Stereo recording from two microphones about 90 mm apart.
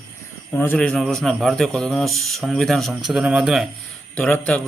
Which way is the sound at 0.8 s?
5° left (ahead or behind).